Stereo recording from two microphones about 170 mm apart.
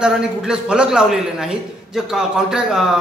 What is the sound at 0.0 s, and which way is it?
Speech, 5° right (ahead or behind).